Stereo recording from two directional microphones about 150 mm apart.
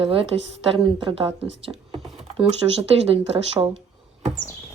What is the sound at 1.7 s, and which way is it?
Speech, 10° right (ahead or behind).